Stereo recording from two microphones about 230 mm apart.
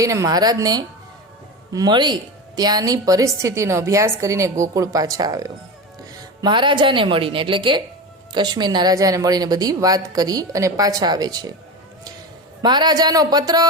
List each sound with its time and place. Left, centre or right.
0.0 s a woman's voice: centre
12.6 s a woman's voice: centre